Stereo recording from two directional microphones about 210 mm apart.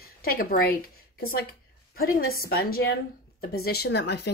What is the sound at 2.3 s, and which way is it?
A woman's voice, 45° left (ahead or behind).